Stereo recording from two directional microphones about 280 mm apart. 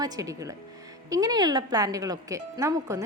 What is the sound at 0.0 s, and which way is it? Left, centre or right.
Speech, centre.